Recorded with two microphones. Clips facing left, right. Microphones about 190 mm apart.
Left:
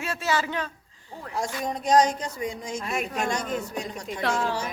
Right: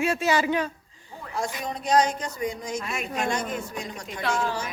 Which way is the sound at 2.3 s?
30° left (ahead or behind).